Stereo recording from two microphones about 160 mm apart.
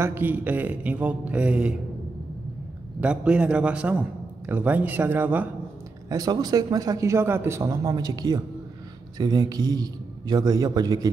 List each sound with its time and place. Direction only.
0.0 s speech: 15° right (ahead or behind)
3.0 s speech: 5° right (ahead or behind)
6.0 s speech: 25° right (ahead or behind)